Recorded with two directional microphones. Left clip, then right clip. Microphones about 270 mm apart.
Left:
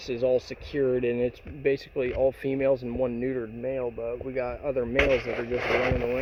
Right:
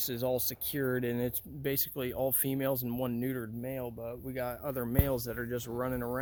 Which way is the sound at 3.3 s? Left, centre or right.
Right.